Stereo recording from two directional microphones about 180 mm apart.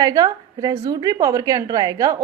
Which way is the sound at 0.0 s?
20° right (ahead or behind).